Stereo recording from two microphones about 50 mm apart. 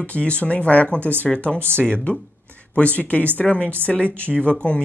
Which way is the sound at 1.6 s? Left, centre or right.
Right.